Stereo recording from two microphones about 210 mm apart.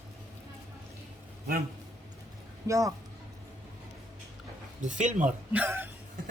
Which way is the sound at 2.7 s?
15° right (ahead or behind).